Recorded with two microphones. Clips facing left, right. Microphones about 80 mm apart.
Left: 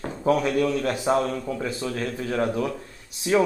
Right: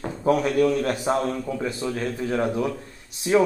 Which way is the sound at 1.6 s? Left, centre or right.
Centre.